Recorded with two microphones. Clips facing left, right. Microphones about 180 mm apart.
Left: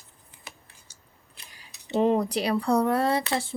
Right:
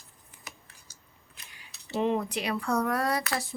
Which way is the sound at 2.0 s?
35° left (ahead or behind).